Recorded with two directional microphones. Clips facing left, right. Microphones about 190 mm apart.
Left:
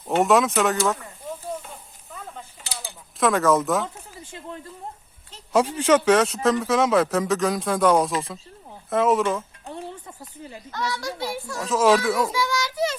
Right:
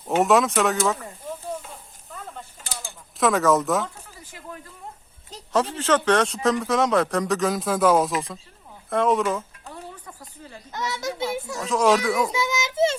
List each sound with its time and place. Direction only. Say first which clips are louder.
0.0 s a man's voice: even; centre (ahead or behind)
1.6 s sizzle: even; centre (ahead or behind)
3.2 s a man's voice: even; centre (ahead or behind)
3.8 s a sound: left 3 dB; 25° left (ahead or behind)
5.5 s a man's voice: left 3 dB; 10° left (ahead or behind)
9.6 s a sound: left 4 dB; 25° left (ahead or behind)
10.7 s a child's voice: even; 20° right (ahead or behind)
11.5 s a man's voice: left 2 dB; centre (ahead or behind)
12.3 s child singing: even; 20° right (ahead or behind)